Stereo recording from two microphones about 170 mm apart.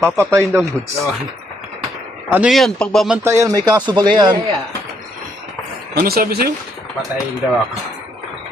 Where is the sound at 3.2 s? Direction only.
15° right (ahead or behind).